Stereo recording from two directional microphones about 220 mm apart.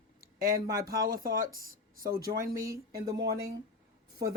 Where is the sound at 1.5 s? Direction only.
40° right (ahead or behind).